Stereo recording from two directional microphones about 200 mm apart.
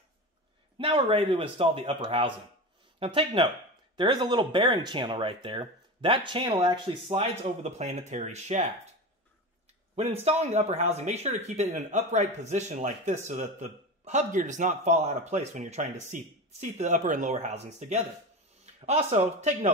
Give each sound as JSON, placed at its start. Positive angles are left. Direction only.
{"t": 0.7, "sound": "speech", "side_deg": -25}
{"t": 10.2, "sound": "speech", "side_deg": -35}